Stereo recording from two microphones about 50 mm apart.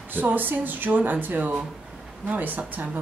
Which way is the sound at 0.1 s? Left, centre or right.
Right.